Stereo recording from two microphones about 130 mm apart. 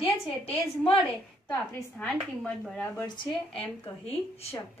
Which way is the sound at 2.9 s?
35° left (ahead or behind).